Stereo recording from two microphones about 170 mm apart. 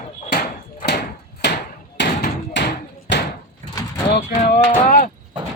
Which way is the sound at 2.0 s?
90° left.